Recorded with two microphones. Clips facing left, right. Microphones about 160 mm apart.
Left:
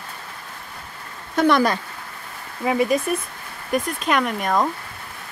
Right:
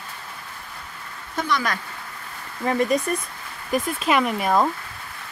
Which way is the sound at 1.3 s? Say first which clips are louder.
Left 8 dB; 60° left (ahead or behind).